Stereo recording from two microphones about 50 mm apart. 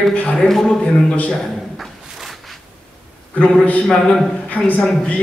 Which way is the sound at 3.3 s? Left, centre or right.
Left.